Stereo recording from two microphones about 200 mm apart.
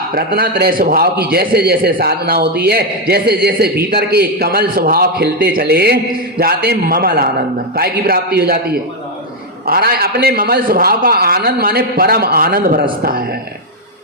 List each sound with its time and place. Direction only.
0.1 s a man's voice: 50° right (ahead or behind)